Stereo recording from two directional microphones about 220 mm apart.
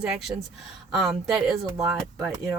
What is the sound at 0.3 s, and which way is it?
Speech, 10° right (ahead or behind).